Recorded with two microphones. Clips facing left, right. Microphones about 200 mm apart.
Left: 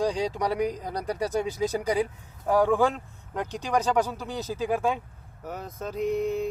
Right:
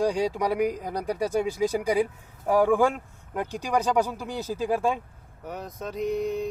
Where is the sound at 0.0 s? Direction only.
10° right (ahead or behind).